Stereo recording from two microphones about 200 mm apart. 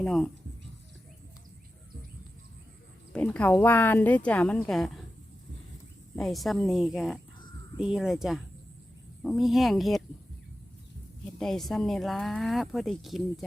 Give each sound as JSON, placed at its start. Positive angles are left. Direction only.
{"t": 0.0, "sound": "speech", "side_deg": 0}
{"t": 3.1, "sound": "speech", "side_deg": 5}
{"t": 6.1, "sound": "speech", "side_deg": 0}
{"t": 11.3, "sound": "speech", "side_deg": 0}